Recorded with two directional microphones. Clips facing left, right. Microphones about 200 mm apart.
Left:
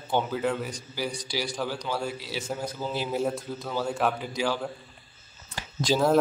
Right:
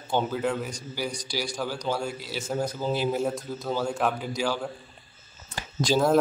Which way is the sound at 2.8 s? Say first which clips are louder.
Right 5 dB; 15° right (ahead or behind).